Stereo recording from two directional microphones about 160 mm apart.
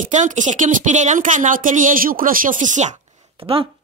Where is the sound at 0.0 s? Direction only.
50° right (ahead or behind).